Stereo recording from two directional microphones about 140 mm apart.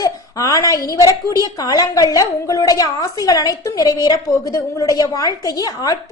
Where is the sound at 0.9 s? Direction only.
25° left (ahead or behind).